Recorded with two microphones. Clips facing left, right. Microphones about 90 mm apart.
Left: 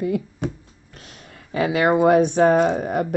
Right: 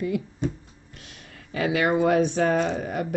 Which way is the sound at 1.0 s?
35° left (ahead or behind).